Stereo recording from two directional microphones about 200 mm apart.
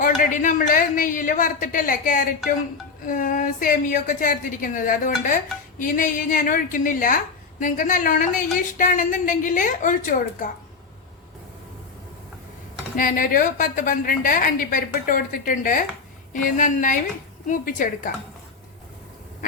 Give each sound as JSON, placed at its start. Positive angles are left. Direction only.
{"t": 0.0, "sound": "a woman's voice", "side_deg": 40}
{"t": 13.0, "sound": "a woman's voice", "side_deg": 45}